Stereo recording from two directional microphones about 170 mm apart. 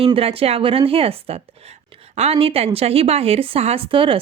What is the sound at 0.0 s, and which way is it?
Speech, 35° right (ahead or behind).